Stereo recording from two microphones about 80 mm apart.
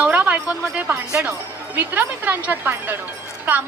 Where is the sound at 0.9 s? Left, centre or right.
Right.